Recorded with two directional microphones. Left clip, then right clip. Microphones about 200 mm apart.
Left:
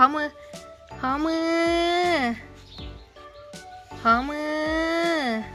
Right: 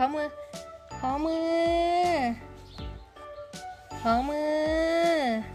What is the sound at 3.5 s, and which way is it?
Music, centre (ahead or behind).